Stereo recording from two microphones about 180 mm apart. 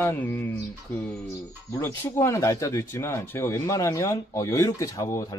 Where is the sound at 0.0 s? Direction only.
10° left (ahead or behind).